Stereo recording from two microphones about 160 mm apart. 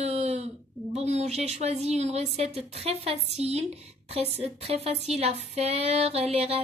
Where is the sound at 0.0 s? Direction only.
40° right (ahead or behind).